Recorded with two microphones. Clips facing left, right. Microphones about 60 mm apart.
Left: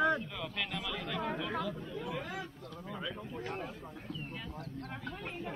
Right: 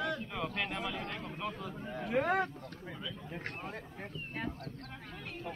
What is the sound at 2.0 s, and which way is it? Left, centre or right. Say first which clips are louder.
Speech: right 13 dB; right.